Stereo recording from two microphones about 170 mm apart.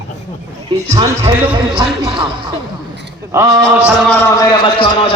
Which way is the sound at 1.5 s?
25° right (ahead or behind).